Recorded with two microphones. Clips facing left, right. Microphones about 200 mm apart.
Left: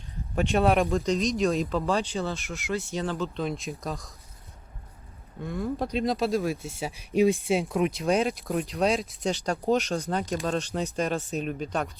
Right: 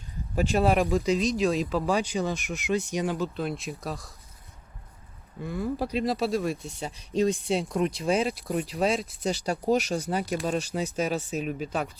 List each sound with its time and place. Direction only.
0.3 s speech: centre (ahead or behind)
1.9 s speech: 15° right (ahead or behind)
5.4 s speech: centre (ahead or behind)
7.1 s speech: 15° left (ahead or behind)
7.4 s speech: centre (ahead or behind)